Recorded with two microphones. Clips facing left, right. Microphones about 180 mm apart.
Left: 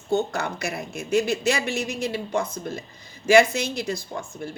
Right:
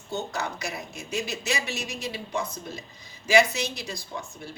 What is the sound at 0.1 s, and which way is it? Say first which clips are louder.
A man's voice: left 7 dB; 55° left (ahead or behind).